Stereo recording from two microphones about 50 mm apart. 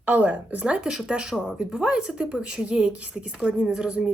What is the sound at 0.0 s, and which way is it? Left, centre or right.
Speech, right.